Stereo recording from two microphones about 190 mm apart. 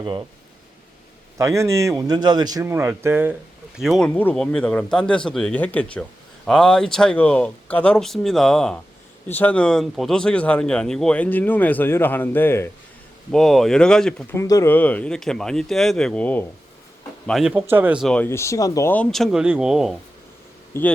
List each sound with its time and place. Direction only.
0.0 s speech: 25° right (ahead or behind)
1.4 s speech: 15° right (ahead or behind)
3.8 s speech: centre (ahead or behind)
14.3 s speech: 15° left (ahead or behind); by 20.0 s 5° right (ahead or behind)
20.7 s speech: 10° left (ahead or behind)